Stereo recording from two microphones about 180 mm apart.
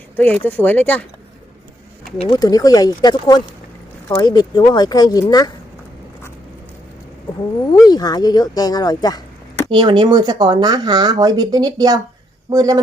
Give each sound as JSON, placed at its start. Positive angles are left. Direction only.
{"t": 0.2, "sound": "speech", "side_deg": 10}
{"t": 2.2, "sound": "speech", "side_deg": 20}
{"t": 7.6, "sound": "speech", "side_deg": 20}
{"t": 9.6, "sound": "speech", "side_deg": -25}